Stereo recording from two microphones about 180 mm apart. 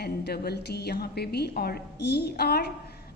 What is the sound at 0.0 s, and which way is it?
A woman's voice, 60° left (ahead or behind).